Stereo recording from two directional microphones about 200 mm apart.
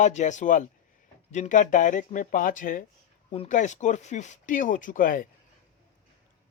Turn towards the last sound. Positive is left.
turn(degrees=45)  # may be behind; listen again after turning